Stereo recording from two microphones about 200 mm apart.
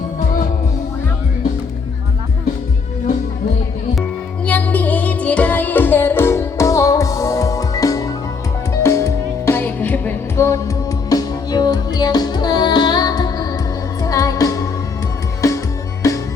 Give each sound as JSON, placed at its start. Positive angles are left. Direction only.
{"t": 4.4, "sound": "music", "side_deg": 10}